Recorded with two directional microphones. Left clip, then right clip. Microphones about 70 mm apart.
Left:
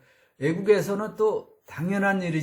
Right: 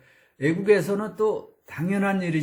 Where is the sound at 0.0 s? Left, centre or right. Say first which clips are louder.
Right 2 dB; left.